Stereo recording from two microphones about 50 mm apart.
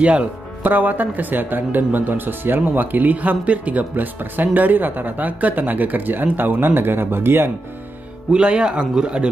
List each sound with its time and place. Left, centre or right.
0.0 s speech: right
8.3 s speech: centre